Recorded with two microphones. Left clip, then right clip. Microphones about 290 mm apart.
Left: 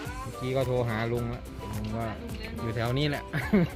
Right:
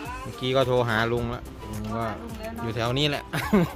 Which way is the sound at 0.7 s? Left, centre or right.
Right.